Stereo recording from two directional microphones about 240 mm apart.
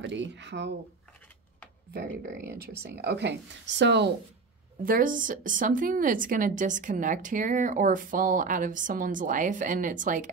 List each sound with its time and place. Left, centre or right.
0.0 s a woman's voice: right
3.0 s a woman's voice: right
4.8 s a woman's voice: right